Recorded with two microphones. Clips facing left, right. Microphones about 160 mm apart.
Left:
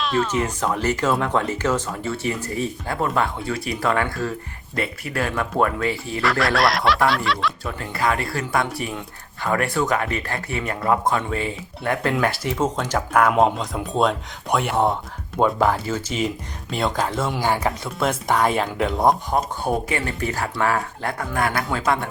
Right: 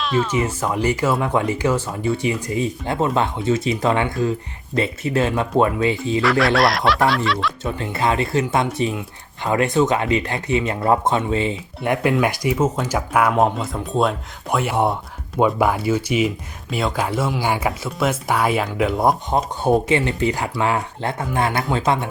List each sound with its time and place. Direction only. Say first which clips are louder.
0.0 s speech: right 2 dB; centre (ahead or behind); by 6.2 s 20° right (ahead or behind)
6.2 s speech: right 2 dB; centre (ahead or behind)
7.6 s speech: right 3 dB; 25° right (ahead or behind); by 19.1 s 5° right (ahead or behind)
19.3 s speech: right 4 dB; 25° right (ahead or behind)